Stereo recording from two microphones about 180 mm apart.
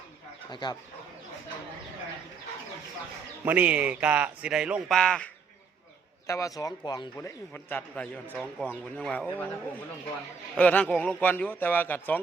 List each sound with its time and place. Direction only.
0.5 s speech: 25° left (ahead or behind)
3.4 s a man's voice: 10° right (ahead or behind)
6.2 s speech: 15° left (ahead or behind)
7.2 s speech: 10° left (ahead or behind)
10.6 s speech: 5° left (ahead or behind)